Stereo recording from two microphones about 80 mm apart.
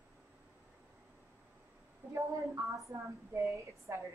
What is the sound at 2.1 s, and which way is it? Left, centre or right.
A woman's voice, right.